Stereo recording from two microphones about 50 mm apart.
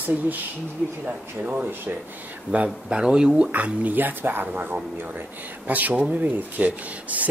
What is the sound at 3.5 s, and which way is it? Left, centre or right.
Speech, right.